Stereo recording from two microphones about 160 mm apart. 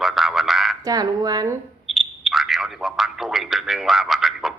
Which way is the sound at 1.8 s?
Centre (ahead or behind).